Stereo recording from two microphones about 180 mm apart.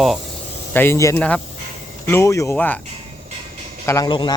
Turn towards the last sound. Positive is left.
turn(degrees=25)  # may be behind; listen again after turning